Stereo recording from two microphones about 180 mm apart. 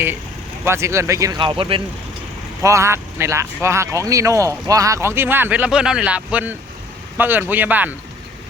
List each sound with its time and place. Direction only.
0.6 s speech: 15° right (ahead or behind)
2.6 s speech: 15° right (ahead or behind)